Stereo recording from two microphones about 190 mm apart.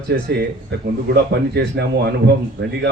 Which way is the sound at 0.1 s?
65° right (ahead or behind).